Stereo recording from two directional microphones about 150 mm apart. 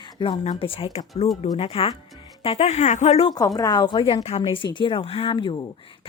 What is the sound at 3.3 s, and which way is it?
Speech, 25° left (ahead or behind).